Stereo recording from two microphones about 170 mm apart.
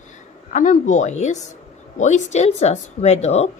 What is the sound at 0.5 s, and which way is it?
A woman's voice, 50° left (ahead or behind).